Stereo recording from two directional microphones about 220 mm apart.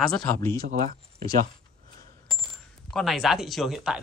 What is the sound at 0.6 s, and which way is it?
Speech, 40° right (ahead or behind).